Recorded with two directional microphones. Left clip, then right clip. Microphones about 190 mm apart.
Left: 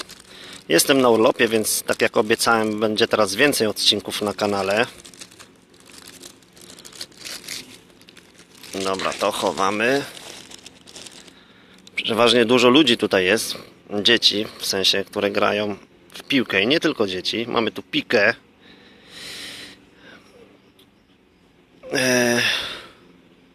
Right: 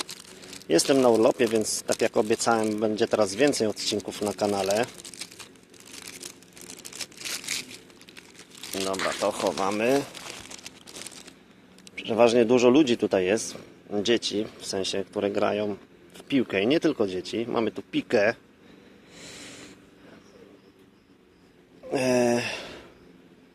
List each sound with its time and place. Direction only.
0.7 s speech: 5° left (ahead or behind)
7.2 s a sound: 25° right (ahead or behind)
9.2 s speech: centre (ahead or behind)
11.9 s speech: centre (ahead or behind)
21.8 s gasp: centre (ahead or behind)